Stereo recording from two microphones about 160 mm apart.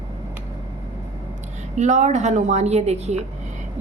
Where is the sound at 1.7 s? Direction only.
50° right (ahead or behind).